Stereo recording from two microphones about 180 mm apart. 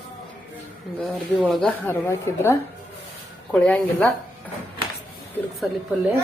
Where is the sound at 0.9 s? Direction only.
Centre (ahead or behind).